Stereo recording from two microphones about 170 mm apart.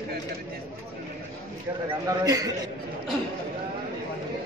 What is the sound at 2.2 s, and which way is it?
Speech, 20° right (ahead or behind).